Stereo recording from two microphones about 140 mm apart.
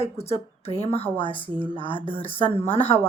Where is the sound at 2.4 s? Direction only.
15° left (ahead or behind).